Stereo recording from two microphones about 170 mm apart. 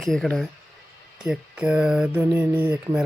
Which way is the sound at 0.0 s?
Centre (ahead or behind).